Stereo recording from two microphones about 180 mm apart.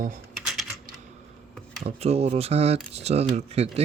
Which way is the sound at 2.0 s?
35° right (ahead or behind).